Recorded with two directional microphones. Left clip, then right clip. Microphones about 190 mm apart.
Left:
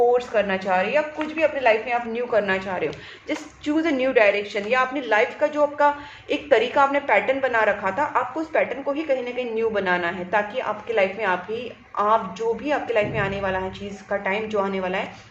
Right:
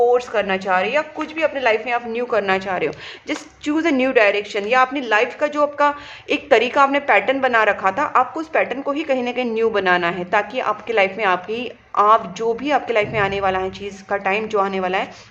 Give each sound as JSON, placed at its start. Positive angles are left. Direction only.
{"t": 0.1, "sound": "a woman's voice", "side_deg": -40}